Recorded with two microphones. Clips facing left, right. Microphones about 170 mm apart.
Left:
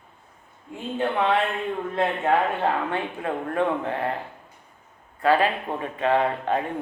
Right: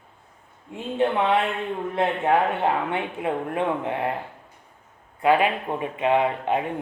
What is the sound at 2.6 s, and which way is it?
Speech, 20° right (ahead or behind).